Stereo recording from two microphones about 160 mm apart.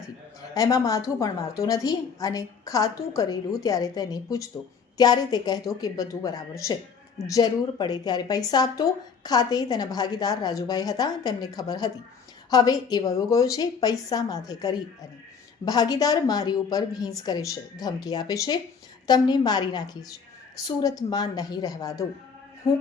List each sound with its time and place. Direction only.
0.5 s a woman's voice: 20° left (ahead or behind)